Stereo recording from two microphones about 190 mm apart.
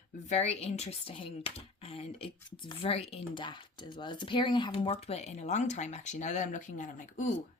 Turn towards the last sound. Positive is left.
turn(degrees=40)  # may be behind; listen again after turning